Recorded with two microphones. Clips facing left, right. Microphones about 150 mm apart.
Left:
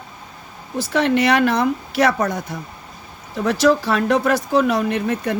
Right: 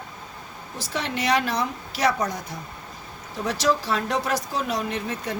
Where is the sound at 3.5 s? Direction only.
60° left (ahead or behind).